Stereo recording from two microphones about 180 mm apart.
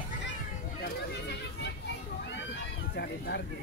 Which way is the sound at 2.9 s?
65° left (ahead or behind).